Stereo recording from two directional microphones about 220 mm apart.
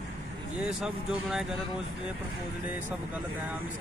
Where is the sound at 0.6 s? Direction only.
Centre (ahead or behind).